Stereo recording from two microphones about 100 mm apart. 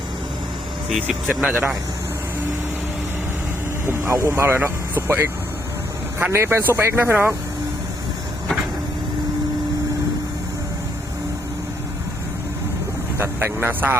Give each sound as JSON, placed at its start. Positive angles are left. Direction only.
{"t": 0.9, "sound": "speech", "side_deg": 0}
{"t": 3.8, "sound": "speech", "side_deg": -30}
{"t": 13.1, "sound": "speech", "side_deg": -25}